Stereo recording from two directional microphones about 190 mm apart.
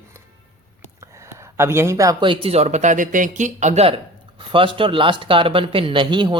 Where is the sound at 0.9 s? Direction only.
15° right (ahead or behind).